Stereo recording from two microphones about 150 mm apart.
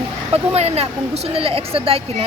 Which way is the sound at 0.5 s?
45° right (ahead or behind).